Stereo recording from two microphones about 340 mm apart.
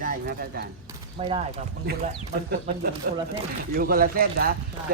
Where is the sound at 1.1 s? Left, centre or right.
Centre.